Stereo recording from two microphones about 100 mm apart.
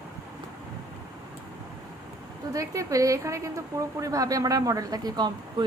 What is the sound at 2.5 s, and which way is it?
A woman's voice, 35° right (ahead or behind).